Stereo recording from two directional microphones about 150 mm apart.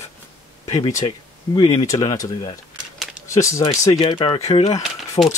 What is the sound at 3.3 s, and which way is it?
Speech, 20° left (ahead or behind).